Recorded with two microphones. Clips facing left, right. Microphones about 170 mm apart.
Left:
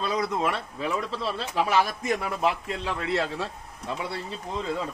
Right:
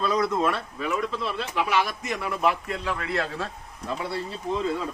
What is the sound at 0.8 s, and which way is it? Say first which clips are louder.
A man's voice: right 1 dB; 35° left (ahead or behind).